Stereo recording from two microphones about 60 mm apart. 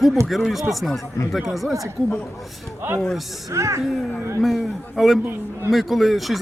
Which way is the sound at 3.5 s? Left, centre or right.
Right.